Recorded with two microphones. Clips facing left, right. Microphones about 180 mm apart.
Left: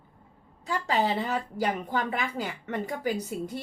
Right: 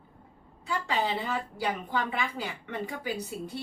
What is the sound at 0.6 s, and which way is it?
A woman's voice, 40° left (ahead or behind).